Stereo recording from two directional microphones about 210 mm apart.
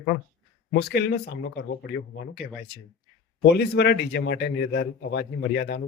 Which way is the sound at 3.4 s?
50° left (ahead or behind).